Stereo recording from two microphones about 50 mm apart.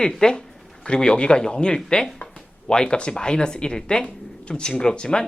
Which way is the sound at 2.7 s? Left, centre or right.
Centre.